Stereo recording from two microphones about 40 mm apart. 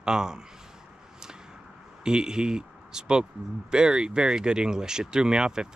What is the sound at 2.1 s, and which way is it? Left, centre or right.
Speech, centre.